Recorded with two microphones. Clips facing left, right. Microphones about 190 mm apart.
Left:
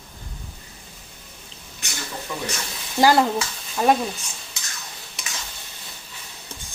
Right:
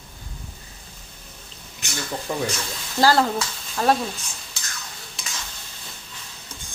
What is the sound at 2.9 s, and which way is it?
Speech, 15° left (ahead or behind).